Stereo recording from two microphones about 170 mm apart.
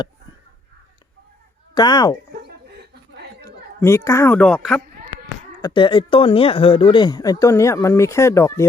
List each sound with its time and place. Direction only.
1.7 s speech: 25° left (ahead or behind)
3.4 s speech: 15° left (ahead or behind)
5.6 s speech: 30° left (ahead or behind)